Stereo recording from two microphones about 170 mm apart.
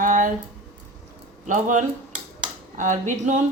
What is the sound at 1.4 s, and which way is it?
A woman's voice, 45° right (ahead or behind).